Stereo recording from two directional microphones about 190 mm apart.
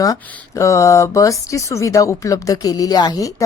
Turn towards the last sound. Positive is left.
turn(degrees=20)  # may be behind; listen again after turning